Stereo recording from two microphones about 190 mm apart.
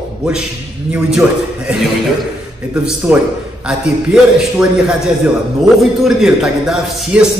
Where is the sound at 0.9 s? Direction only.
5° right (ahead or behind).